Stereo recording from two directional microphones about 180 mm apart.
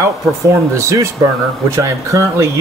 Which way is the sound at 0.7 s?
15° right (ahead or behind).